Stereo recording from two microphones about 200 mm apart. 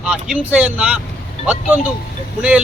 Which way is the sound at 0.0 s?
5° right (ahead or behind).